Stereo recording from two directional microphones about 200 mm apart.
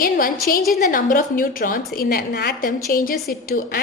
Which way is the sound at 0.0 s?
45° left (ahead or behind).